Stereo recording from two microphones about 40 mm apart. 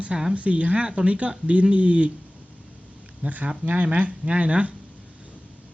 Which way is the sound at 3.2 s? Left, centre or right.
Right.